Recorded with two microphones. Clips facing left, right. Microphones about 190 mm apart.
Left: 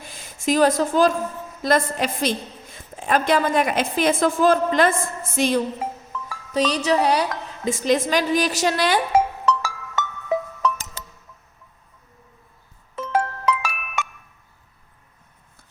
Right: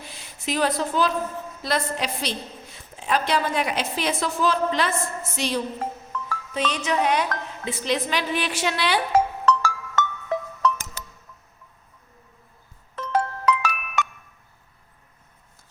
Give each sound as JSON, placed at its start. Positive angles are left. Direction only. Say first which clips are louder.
{"t": 0.0, "sound": "a sound", "louder": "left 7 dB", "side_deg": 45}
{"t": 1.6, "sound": "a woman's voice", "louder": "left 6 dB", "side_deg": 50}
{"t": 6.5, "sound": "a woman's voice", "louder": "left 6 dB", "side_deg": 35}
{"t": 9.1, "sound": "music", "louder": "left 1 dB", "side_deg": 10}
{"t": 13.0, "sound": "music", "louder": "left 1 dB", "side_deg": 5}